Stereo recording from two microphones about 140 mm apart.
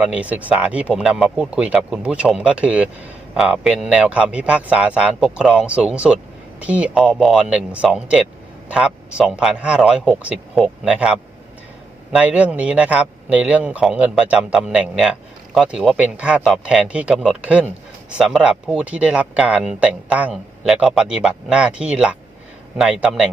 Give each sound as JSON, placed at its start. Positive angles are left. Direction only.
{"t": 0.0, "sound": "a man's voice", "side_deg": -10}